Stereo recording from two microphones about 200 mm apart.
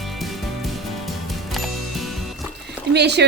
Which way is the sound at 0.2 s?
Centre (ahead or behind).